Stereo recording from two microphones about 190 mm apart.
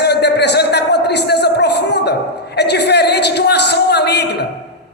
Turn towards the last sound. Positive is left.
turn(degrees=60)  # may be behind; listen again after turning